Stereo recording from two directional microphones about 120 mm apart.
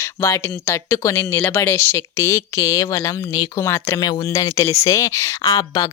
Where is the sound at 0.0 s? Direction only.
25° left (ahead or behind).